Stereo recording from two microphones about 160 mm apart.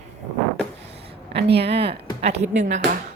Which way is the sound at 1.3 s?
90° right.